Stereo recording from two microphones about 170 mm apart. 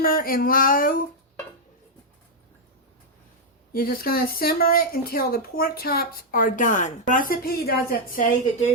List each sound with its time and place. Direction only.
0.0 s speech: 60° left (ahead or behind)
3.7 s speech: 60° left (ahead or behind)